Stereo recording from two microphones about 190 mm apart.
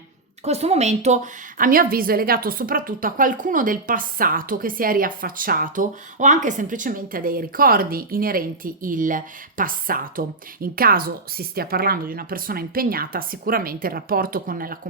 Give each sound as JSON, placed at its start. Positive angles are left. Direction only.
{"t": 0.4, "sound": "a woman's voice", "side_deg": -35}